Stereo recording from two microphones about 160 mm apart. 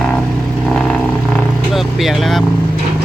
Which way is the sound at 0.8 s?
5° left (ahead or behind).